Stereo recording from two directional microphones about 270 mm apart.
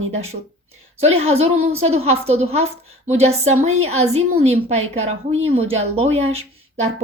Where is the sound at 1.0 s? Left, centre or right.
Right.